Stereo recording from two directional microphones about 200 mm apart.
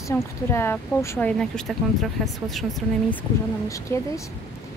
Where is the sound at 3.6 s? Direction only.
15° left (ahead or behind).